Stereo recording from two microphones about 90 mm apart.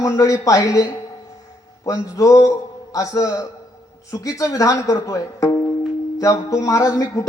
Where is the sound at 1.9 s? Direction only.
40° left (ahead or behind).